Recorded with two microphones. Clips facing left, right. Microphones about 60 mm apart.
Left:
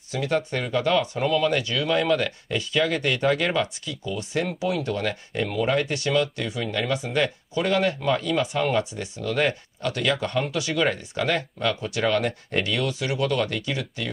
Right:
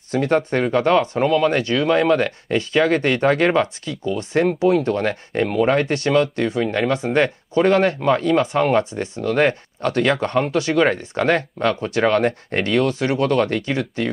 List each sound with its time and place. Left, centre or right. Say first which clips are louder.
0.1 s speech: right 7 dB; right